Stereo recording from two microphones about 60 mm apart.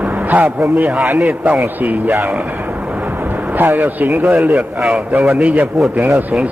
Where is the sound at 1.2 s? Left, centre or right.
Right.